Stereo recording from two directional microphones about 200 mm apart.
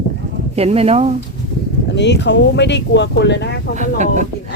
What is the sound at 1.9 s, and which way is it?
Speech, 60° left (ahead or behind).